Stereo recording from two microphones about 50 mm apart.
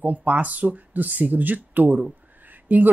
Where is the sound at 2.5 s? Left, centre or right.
Right.